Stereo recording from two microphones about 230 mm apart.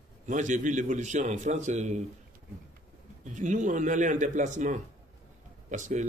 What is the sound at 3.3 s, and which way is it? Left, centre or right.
Speech, right.